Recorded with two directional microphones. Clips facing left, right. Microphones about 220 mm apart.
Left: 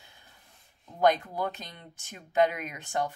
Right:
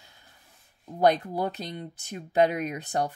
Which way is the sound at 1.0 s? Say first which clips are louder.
Right 2 dB; 35° right (ahead or behind).